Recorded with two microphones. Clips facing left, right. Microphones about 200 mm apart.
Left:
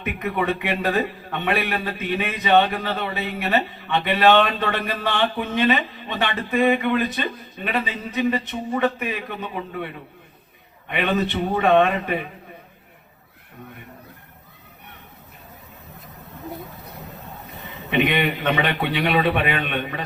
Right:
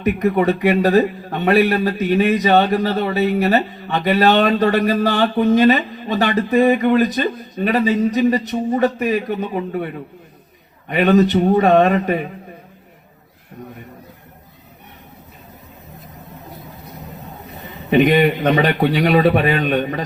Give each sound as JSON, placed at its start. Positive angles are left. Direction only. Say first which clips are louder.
{"t": 0.0, "sound": "a man's voice", "louder": "right 8 dB", "side_deg": -40}
{"t": 17.9, "sound": "a man's voice", "louder": "right 8 dB", "side_deg": -40}